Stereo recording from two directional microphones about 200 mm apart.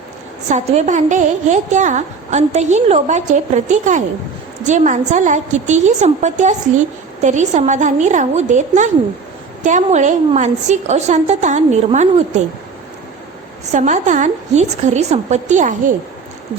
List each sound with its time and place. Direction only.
0.4 s a woman's voice: 35° right (ahead or behind)
13.7 s a woman's voice: 35° right (ahead or behind)